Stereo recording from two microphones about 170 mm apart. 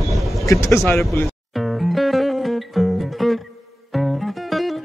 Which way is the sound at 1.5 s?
Centre (ahead or behind).